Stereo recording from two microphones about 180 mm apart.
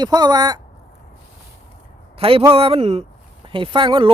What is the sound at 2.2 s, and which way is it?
Speech, 30° right (ahead or behind).